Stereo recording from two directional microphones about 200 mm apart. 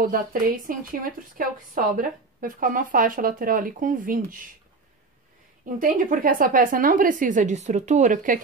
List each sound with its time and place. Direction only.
0.0 s a woman's voice: 45° right (ahead or behind)
5.7 s speech: 40° right (ahead or behind)